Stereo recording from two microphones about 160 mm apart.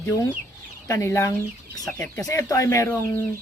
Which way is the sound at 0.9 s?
15° left (ahead or behind).